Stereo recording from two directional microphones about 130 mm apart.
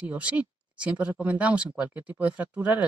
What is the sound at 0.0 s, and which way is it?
Speech, 10° right (ahead or behind).